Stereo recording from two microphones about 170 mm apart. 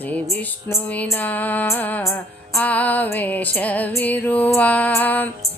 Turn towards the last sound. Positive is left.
turn(degrees=10)  # may be behind; listen again after turning